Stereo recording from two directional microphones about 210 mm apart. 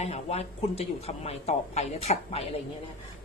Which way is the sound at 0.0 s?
30° left (ahead or behind).